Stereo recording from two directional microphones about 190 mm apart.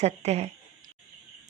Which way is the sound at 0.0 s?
35° right (ahead or behind).